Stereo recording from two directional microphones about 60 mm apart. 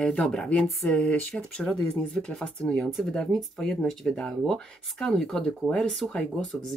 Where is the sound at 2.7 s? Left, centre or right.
Centre.